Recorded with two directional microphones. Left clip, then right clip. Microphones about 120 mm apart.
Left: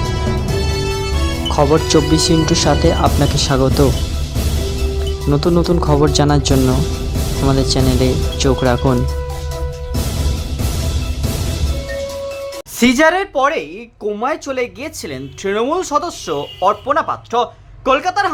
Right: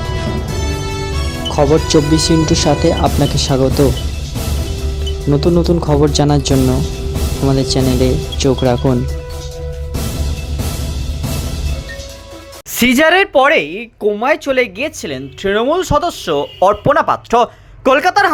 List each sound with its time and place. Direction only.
1.5 s speech: centre (ahead or behind)
5.3 s speech: centre (ahead or behind)
12.8 s a woman's voice: 30° right (ahead or behind)
14.0 s speech: 20° right (ahead or behind)
16.6 s speech: 35° right (ahead or behind)